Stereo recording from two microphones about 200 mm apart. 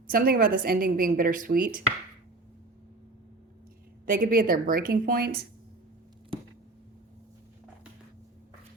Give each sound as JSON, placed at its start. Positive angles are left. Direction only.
{"t": 0.1, "sound": "a woman's voice", "side_deg": -45}
{"t": 4.0, "sound": "a woman's voice", "side_deg": -45}
{"t": 6.3, "sound": "a sound", "side_deg": -25}